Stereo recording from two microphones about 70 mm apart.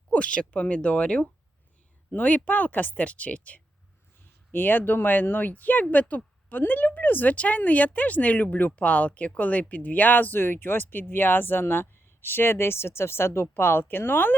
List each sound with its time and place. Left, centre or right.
0.1 s speech: centre